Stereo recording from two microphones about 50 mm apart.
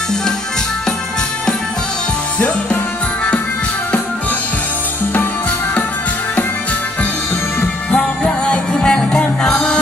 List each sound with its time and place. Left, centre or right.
2.3 s music: left
7.6 s music: left